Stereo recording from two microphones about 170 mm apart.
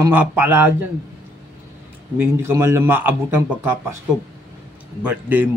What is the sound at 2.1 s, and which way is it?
A man's voice, 15° right (ahead or behind).